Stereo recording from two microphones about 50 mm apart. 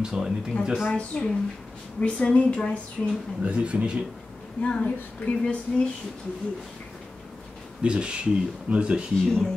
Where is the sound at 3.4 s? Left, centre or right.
Right.